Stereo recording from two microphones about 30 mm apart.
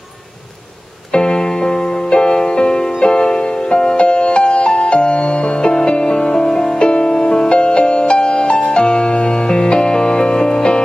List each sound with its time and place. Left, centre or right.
1.1 s music: left
6.3 s music: left
6.8 s music: left